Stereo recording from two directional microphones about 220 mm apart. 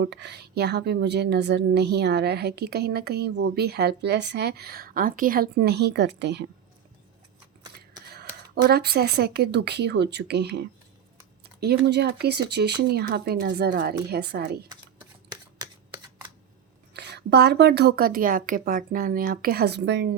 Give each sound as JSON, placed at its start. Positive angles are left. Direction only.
{"t": 0.0, "sound": "a woman's voice", "side_deg": -50}
{"t": 8.6, "sound": "a woman's voice", "side_deg": -45}
{"t": 15.3, "sound": "shuffling cards", "side_deg": -20}
{"t": 16.9, "sound": "a woman's voice", "side_deg": -50}